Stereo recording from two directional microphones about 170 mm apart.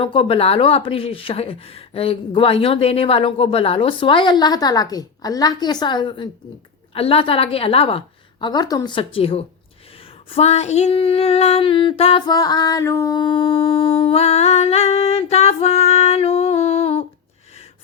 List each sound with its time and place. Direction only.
0.0 s speech: 30° left (ahead or behind)
10.2 s female singing: 35° left (ahead or behind)